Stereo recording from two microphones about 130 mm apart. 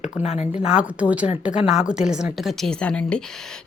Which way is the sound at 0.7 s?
10° right (ahead or behind).